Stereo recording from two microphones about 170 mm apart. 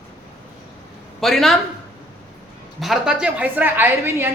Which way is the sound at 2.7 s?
Centre (ahead or behind).